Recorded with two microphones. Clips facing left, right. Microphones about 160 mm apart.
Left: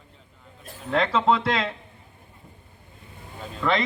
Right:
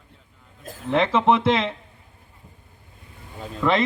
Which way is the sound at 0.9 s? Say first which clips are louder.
Right 3 dB; 20° right (ahead or behind).